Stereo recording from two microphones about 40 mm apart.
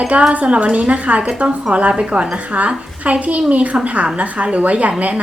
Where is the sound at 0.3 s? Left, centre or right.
Right.